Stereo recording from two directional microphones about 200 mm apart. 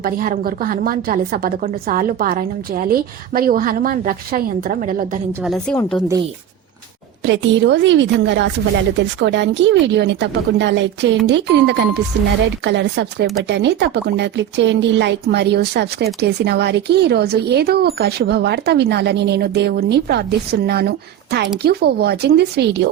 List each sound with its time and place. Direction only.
0.0 s a woman's voice: 45° right (ahead or behind)
5.4 s a woman's voice: centre (ahead or behind)
7.3 s a woman's voice: 65° right (ahead or behind)